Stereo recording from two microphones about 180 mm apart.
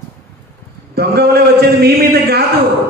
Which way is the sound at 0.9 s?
60° right (ahead or behind).